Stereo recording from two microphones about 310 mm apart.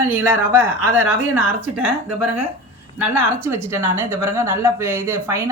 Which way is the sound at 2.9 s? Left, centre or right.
Centre.